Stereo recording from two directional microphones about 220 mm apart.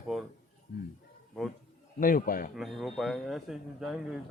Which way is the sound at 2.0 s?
40° left (ahead or behind).